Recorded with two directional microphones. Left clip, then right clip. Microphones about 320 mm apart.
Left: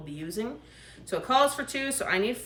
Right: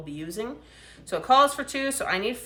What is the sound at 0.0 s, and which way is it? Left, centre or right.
Speech, centre.